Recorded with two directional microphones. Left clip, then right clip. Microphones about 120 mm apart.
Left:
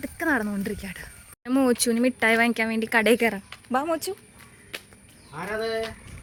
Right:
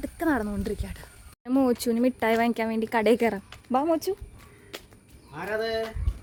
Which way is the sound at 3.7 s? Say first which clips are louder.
Right 1 dB; 40° right (ahead or behind).